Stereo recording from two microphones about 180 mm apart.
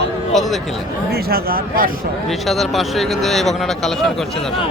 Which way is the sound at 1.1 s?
60° right (ahead or behind).